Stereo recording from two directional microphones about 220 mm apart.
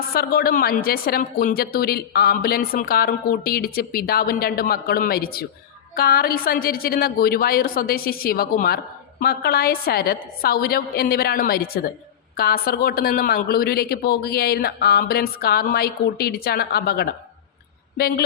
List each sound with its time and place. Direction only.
0.1 s a woman's voice: 45° left (ahead or behind)